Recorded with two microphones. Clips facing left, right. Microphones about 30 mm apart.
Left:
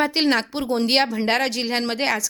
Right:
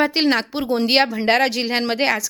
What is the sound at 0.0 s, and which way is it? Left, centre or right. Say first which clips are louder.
A woman's voice: right 2 dB; centre.